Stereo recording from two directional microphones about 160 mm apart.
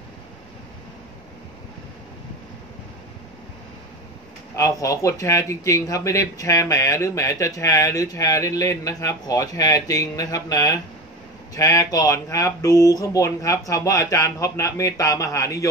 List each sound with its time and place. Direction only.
4.6 s speech: 20° left (ahead or behind)